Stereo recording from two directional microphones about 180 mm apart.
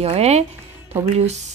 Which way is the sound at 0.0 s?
35° right (ahead or behind).